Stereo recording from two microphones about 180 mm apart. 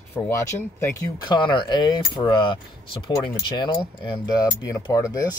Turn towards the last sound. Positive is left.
turn(degrees=20)  # may be behind; listen again after turning